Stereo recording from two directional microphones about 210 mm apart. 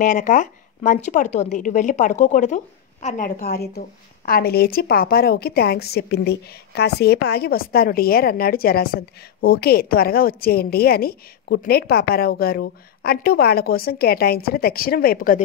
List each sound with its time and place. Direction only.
0.0 s a woman's voice: 35° left (ahead or behind)